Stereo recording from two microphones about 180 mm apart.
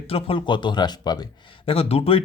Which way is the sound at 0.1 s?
30° left (ahead or behind).